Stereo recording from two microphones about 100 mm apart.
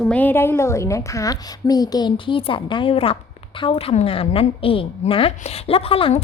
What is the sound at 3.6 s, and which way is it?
A woman's voice, 70° left (ahead or behind).